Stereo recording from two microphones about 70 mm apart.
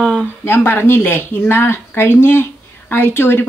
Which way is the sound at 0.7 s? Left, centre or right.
Left.